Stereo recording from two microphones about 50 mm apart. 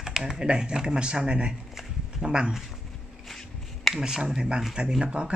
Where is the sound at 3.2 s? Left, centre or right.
Centre.